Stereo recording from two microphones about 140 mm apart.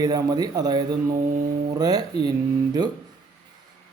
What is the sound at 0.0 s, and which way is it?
Mantra, 25° right (ahead or behind).